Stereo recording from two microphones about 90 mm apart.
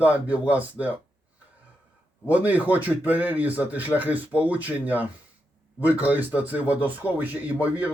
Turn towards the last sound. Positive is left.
turn(degrees=-15)  # may be behind; listen again after turning